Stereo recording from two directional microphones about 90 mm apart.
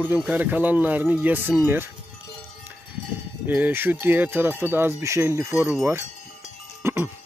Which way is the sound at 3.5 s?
20° right (ahead or behind).